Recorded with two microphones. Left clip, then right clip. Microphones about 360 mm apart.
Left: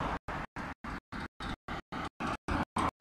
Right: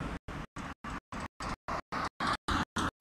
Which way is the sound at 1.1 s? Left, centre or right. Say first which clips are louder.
Right 2 dB; centre.